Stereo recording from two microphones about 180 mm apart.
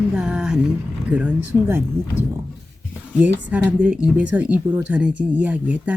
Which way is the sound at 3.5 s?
5° right (ahead or behind).